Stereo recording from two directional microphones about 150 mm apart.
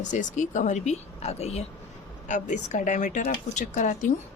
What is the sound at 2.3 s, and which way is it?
A woman's voice, 55° left (ahead or behind).